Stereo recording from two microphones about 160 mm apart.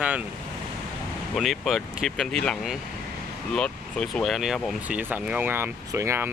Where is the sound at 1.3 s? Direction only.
Centre (ahead or behind).